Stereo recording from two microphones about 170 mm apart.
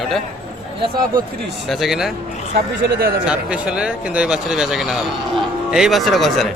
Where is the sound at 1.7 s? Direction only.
Centre (ahead or behind).